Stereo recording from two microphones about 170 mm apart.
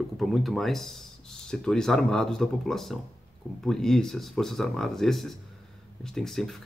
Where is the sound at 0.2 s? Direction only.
Centre (ahead or behind).